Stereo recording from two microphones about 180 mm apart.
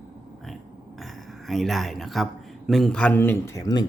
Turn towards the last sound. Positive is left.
turn(degrees=20)  # may be behind; listen again after turning